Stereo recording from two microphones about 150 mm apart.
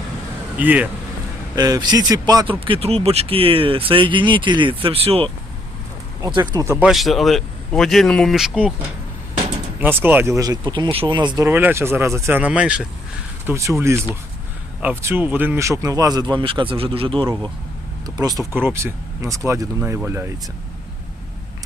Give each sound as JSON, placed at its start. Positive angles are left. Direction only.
{"t": 0.6, "sound": "speech", "side_deg": -10}
{"t": 1.5, "sound": "speech", "side_deg": -25}
{"t": 2.6, "sound": "speech", "side_deg": -40}
{"t": 6.2, "sound": "speech", "side_deg": -30}
{"t": 6.7, "sound": "speech", "side_deg": -10}
{"t": 6.9, "sound": "speech", "side_deg": 0}
{"t": 9.8, "sound": "speech", "side_deg": -15}
{"t": 11.4, "sound": "speech", "side_deg": -15}
{"t": 13.4, "sound": "speech", "side_deg": -20}
{"t": 18.0, "sound": "speech", "side_deg": -25}